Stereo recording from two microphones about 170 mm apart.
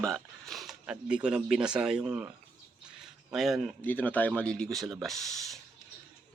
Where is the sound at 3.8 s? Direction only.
10° left (ahead or behind).